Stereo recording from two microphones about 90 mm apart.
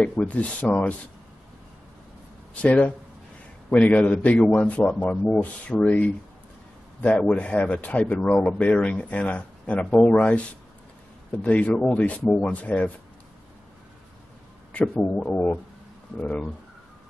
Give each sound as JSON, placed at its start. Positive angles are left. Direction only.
{"t": 0.3, "sound": "speech", "side_deg": 15}
{"t": 2.5, "sound": "speech", "side_deg": 15}
{"t": 14.7, "sound": "speech", "side_deg": 15}